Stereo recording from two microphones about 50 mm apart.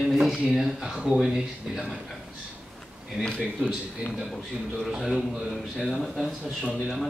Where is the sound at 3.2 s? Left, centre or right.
Centre.